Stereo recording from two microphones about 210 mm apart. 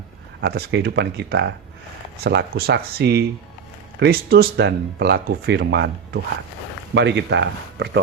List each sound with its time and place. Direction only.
0.4 s speech: 50° right (ahead or behind)